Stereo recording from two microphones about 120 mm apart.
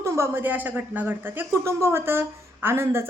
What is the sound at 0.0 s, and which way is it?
Speech, 20° right (ahead or behind).